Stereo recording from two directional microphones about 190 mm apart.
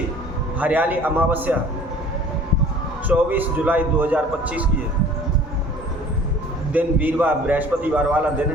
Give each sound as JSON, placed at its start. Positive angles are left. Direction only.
{"t": 0.6, "sound": "a man's voice", "side_deg": -10}
{"t": 3.1, "sound": "a man's voice", "side_deg": -10}
{"t": 6.7, "sound": "a man's voice", "side_deg": -10}